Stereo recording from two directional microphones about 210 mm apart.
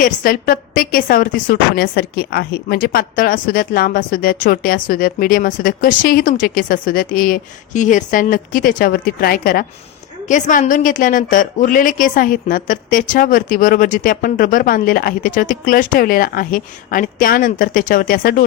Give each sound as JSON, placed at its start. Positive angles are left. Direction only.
{"t": 0.0, "sound": "a woman's voice", "side_deg": 40}